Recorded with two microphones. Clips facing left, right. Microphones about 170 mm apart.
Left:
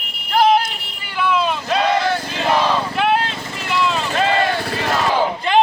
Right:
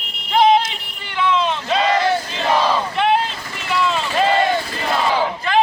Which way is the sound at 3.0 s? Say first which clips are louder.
Even; centre (ahead or behind).